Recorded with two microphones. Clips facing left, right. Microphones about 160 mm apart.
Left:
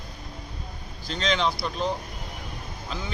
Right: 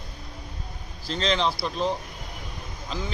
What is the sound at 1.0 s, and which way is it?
Speech, 30° right (ahead or behind).